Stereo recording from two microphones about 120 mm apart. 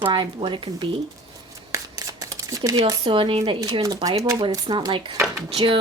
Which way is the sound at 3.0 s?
45° right (ahead or behind).